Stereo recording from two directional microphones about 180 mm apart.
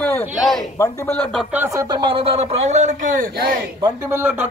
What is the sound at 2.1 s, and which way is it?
A man's voice, 35° right (ahead or behind).